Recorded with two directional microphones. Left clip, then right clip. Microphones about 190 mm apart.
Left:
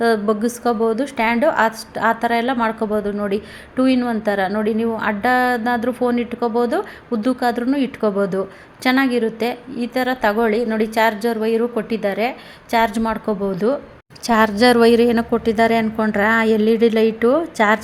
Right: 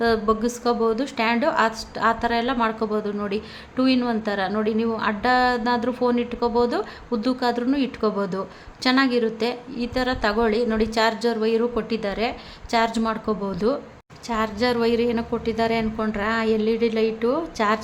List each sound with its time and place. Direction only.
0.0 s a woman's voice: 15° left (ahead or behind)
14.3 s a woman's voice: 35° left (ahead or behind)